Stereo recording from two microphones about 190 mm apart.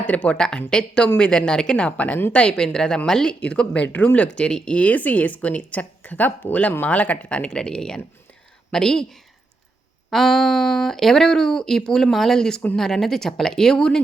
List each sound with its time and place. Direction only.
0.1 s a woman's voice: 5° left (ahead or behind)
10.1 s speech: centre (ahead or behind)